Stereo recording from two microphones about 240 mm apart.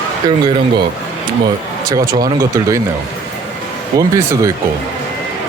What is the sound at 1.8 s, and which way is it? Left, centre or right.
Speech, centre.